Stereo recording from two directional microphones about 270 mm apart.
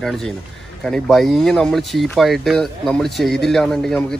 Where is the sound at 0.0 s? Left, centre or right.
Centre.